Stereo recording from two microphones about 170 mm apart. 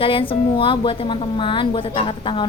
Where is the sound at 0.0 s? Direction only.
30° left (ahead or behind).